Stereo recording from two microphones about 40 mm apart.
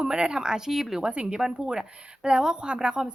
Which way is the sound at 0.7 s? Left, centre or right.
Centre.